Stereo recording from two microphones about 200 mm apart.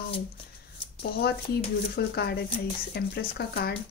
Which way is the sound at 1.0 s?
55° left (ahead or behind).